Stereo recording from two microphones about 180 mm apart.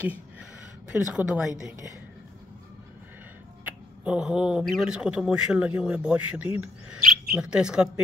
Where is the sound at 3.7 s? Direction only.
5° right (ahead or behind).